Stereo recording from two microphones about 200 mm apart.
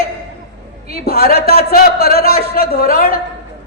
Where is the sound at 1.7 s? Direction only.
50° left (ahead or behind).